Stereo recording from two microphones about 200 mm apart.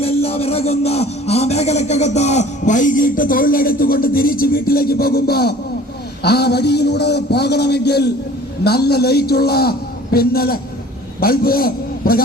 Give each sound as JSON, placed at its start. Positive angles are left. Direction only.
{"t": 0.0, "sound": "a man's voice", "side_deg": 30}